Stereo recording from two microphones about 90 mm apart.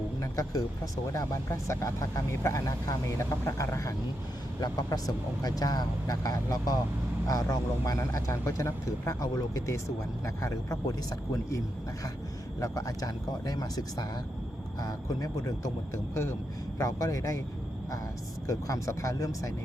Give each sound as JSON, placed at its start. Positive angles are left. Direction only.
{"t": 0.2, "sound": "speech", "side_deg": 40}
{"t": 12.5, "sound": "speech", "side_deg": 40}
{"t": 16.7, "sound": "speech", "side_deg": 35}
{"t": 18.4, "sound": "speech", "side_deg": 35}